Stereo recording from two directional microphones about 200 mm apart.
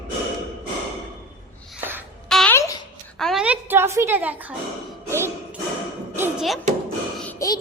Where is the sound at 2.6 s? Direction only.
15° left (ahead or behind).